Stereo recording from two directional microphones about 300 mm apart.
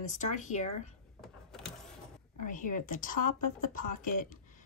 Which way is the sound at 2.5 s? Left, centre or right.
Left.